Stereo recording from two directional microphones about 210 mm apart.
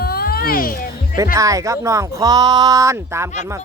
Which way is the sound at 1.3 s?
15° right (ahead or behind).